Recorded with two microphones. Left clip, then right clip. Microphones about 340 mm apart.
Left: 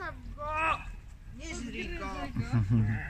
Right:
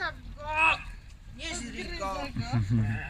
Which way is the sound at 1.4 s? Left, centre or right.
Right.